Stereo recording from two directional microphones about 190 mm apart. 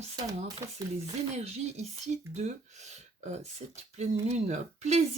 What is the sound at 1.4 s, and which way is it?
Speech, 35° right (ahead or behind).